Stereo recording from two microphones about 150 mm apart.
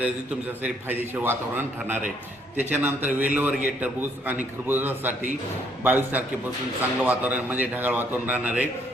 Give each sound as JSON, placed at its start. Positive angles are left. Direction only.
{"t": 0.6, "sound": "a man's voice", "side_deg": -15}